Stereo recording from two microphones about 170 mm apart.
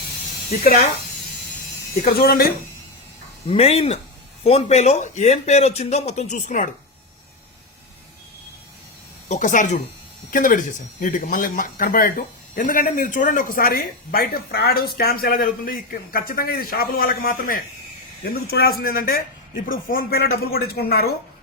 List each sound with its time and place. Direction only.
2.0 s speech: 65° left (ahead or behind)
3.4 s a man's voice: 35° left (ahead or behind)
9.3 s speech: 50° left (ahead or behind); by 21.1 s 65° left (ahead or behind)